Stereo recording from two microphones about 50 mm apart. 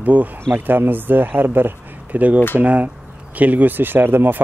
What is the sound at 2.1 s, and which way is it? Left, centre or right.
Speech, right.